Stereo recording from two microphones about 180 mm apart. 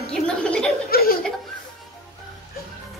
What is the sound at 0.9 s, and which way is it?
Chuckle, 55° left (ahead or behind).